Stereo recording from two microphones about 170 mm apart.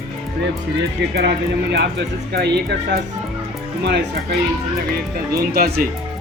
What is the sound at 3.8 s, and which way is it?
Speech, 80° right.